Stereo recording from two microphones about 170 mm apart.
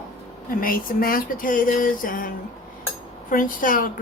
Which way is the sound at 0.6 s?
55° left (ahead or behind).